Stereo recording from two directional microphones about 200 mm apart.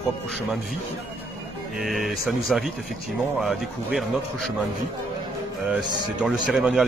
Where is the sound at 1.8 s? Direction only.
Centre (ahead or behind).